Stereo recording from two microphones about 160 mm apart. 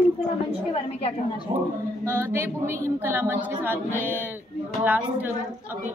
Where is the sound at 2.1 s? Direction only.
15° right (ahead or behind).